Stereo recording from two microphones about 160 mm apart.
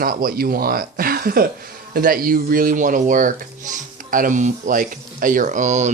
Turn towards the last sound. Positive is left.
turn(degrees=-50)  # may be behind; listen again after turning